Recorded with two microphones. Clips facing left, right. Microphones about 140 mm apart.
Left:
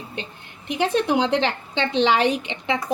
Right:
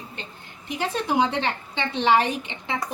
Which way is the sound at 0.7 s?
70° left (ahead or behind).